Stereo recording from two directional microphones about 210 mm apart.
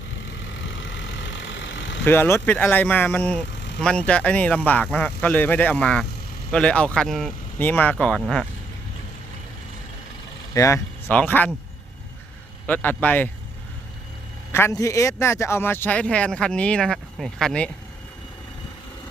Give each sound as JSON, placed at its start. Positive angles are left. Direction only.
{"t": 0.6, "sound": "vehicle", "side_deg": 60}
{"t": 2.0, "sound": "speech", "side_deg": 10}
{"t": 10.5, "sound": "speech", "side_deg": 15}
{"t": 12.6, "sound": "speech", "side_deg": 10}
{"t": 14.5, "sound": "speech", "side_deg": 15}